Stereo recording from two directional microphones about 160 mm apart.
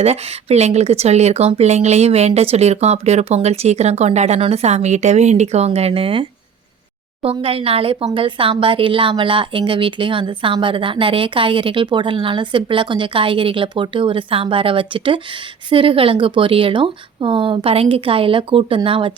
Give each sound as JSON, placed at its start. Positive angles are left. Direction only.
{"t": 0.0, "sound": "a woman's voice", "side_deg": -40}